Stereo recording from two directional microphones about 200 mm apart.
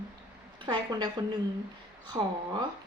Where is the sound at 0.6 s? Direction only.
20° right (ahead or behind).